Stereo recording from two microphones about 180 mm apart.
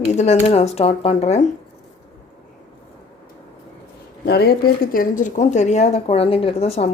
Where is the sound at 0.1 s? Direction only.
40° left (ahead or behind).